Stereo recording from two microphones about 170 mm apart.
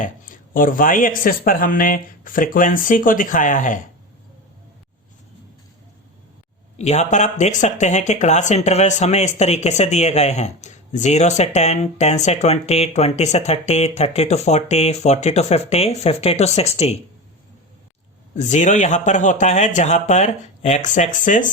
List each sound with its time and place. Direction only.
0.0 s speech: 55° left (ahead or behind)
6.7 s speech: 40° left (ahead or behind)
18.3 s speech: 45° left (ahead or behind)